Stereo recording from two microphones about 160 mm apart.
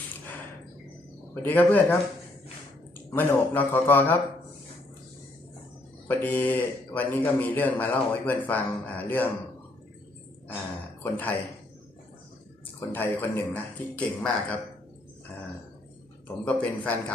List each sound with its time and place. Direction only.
1.3 s speech: 10° left (ahead or behind)
3.1 s speech: 15° left (ahead or behind)
6.0 s speech: 10° left (ahead or behind)
10.5 s speech: 10° left (ahead or behind)
12.9 s speech: 15° left (ahead or behind)
16.4 s speech: 10° left (ahead or behind)